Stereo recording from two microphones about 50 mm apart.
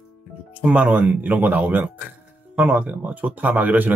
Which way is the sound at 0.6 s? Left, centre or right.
Right.